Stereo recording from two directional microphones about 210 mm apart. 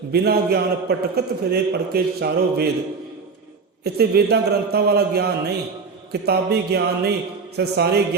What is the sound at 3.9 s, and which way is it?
A man's voice, 50° right (ahead or behind).